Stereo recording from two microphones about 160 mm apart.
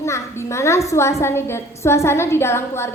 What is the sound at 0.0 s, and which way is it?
A woman's voice, 20° left (ahead or behind).